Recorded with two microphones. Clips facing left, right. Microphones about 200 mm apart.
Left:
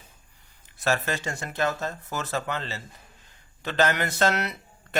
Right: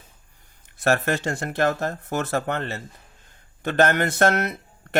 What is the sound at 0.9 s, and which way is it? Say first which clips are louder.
Speech: right 5 dB; 60° right (ahead or behind).